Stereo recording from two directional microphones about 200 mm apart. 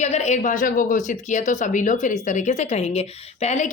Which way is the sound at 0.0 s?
35° left (ahead or behind).